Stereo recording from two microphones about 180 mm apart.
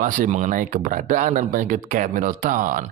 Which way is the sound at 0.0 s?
45° right (ahead or behind).